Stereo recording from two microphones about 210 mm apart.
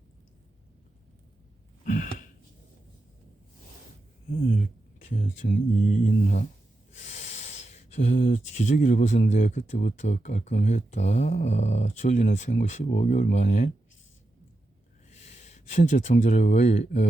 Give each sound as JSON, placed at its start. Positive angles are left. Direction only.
{"t": 1.8, "sound": "a sound", "side_deg": 40}
{"t": 4.3, "sound": "speech", "side_deg": 40}
{"t": 15.1, "sound": "speech", "side_deg": 35}